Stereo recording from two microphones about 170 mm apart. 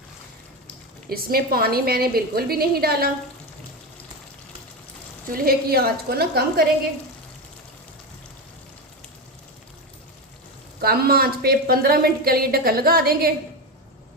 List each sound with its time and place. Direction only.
1.1 s a woman's voice: 60° right (ahead or behind)
5.3 s a woman's voice: 60° right (ahead or behind)
10.8 s a woman's voice: 65° right (ahead or behind)